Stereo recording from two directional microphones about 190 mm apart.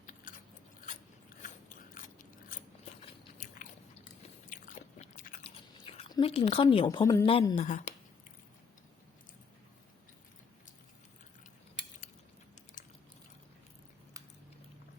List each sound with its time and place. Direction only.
0.0 s a sound: 45° left (ahead or behind)
1.4 s biting: 45° left (ahead or behind)
5.4 s speech: 30° left (ahead or behind)